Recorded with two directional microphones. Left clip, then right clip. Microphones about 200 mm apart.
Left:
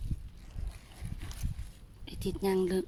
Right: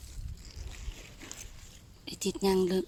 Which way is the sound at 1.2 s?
20° right (ahead or behind).